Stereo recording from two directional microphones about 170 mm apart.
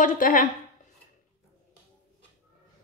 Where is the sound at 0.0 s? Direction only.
50° left (ahead or behind).